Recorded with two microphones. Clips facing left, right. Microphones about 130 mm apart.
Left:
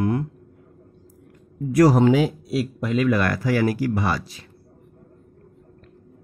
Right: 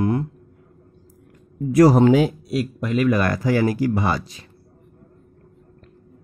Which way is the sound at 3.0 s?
20° right (ahead or behind).